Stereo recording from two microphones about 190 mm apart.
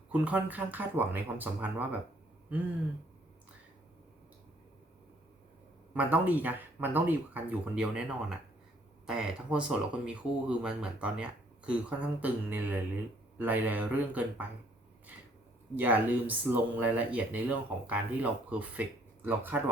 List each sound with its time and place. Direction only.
0.1 s speech: 5° right (ahead or behind)
5.9 s speech: 10° right (ahead or behind)
15.7 s speech: 10° right (ahead or behind)